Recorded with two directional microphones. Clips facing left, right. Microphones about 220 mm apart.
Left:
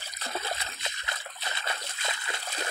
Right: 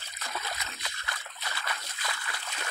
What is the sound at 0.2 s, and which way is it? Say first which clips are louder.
Splash: left 4 dB; 30° left (ahead or behind).